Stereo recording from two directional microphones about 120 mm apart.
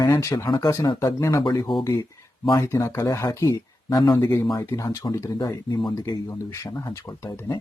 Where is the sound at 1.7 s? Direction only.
45° left (ahead or behind).